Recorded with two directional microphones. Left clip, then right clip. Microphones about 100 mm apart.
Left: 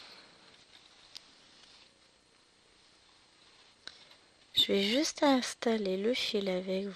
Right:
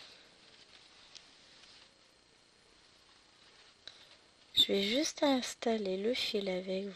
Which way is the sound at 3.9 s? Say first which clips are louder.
Left 3 dB; 30° left (ahead or behind).